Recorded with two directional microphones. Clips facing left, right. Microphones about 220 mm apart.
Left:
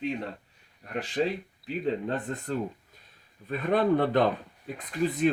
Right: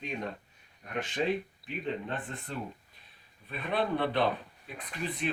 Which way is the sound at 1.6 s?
40° left (ahead or behind).